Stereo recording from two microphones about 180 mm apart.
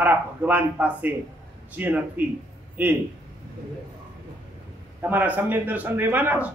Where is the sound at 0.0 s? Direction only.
10° right (ahead or behind).